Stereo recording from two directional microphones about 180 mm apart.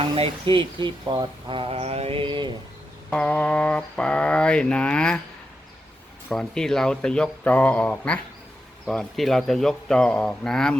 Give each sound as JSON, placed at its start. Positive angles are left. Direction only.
{"t": 0.0, "sound": "speech", "side_deg": -30}
{"t": 3.1, "sound": "mantra", "side_deg": 5}
{"t": 6.2, "sound": "speech", "side_deg": 5}